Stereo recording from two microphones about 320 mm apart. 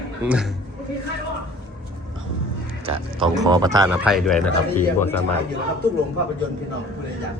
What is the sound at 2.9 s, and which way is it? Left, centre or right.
A man's voice, centre.